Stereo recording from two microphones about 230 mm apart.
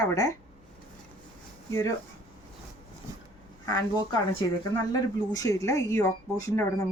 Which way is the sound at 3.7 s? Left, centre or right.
Centre.